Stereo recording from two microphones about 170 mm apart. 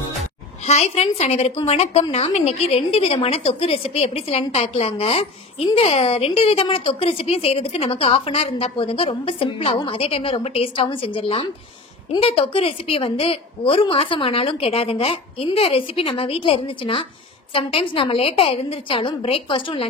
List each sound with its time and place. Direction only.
0.7 s a woman's voice: 40° left (ahead or behind)